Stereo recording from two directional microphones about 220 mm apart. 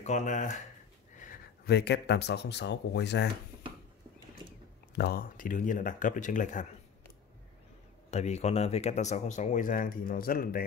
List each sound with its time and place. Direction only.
0.0 s speech: 30° left (ahead or behind); by 3.3 s 50° left (ahead or behind)
4.9 s speech: 45° left (ahead or behind)
8.1 s speech: 30° left (ahead or behind)